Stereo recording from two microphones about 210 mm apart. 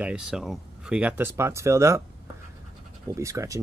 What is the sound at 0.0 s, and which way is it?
Speech, 5° right (ahead or behind).